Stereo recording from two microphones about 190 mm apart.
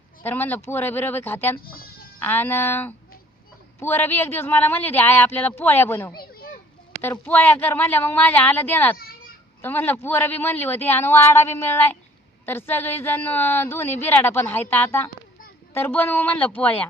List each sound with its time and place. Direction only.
0.2 s a woman's voice: 10° left (ahead or behind)
1.6 s bleat: 50° left (ahead or behind)
2.1 s a woman's voice: 10° left (ahead or behind)
6.1 s a sound: 55° left (ahead or behind)
7.0 s a woman's voice: 10° left (ahead or behind)
9.0 s children playing: 50° left (ahead or behind)
9.6 s a woman's voice: 10° left (ahead or behind)